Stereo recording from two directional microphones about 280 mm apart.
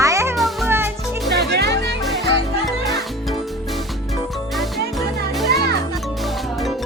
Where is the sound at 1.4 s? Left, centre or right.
Right.